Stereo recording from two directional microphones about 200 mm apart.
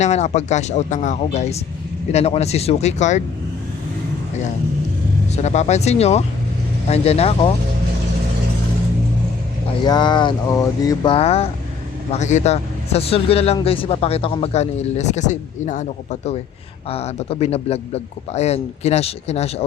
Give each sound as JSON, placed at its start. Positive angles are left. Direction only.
{"t": 0.0, "sound": "speech", "side_deg": 35}
{"t": 5.3, "sound": "speech", "side_deg": 35}
{"t": 9.8, "sound": "speech", "side_deg": 20}